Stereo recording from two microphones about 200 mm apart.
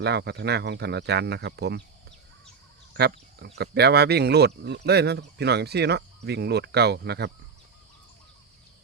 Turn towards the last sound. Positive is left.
turn(degrees=-55)  # may be behind; listen again after turning